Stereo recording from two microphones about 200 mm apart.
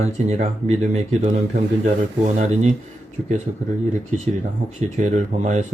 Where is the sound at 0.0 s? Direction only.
35° right (ahead or behind).